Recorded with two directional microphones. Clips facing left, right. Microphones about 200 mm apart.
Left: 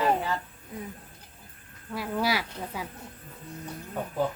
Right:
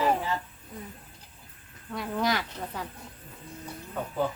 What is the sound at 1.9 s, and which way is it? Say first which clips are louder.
Female singing: even; 5° left (ahead or behind).